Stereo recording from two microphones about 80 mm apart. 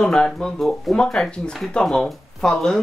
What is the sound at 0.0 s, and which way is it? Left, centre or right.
Speech, centre.